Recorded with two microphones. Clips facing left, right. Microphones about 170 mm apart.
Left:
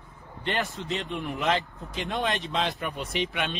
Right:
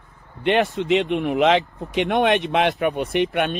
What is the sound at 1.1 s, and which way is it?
Speech, 75° right (ahead or behind).